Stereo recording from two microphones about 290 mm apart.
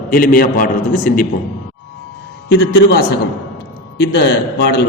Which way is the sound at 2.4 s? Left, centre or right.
Left.